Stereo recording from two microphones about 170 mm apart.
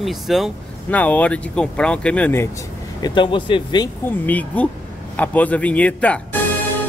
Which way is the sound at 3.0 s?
25° left (ahead or behind).